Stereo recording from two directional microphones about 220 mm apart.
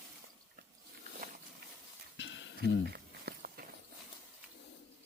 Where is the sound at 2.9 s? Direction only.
45° right (ahead or behind).